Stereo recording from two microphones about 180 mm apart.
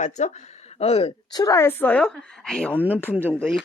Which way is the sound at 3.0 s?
10° left (ahead or behind).